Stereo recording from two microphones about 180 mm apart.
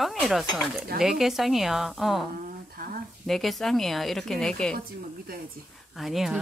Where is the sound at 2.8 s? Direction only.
55° right (ahead or behind).